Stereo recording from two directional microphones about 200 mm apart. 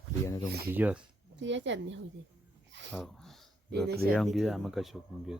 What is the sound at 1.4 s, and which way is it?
Speech, 65° right (ahead or behind).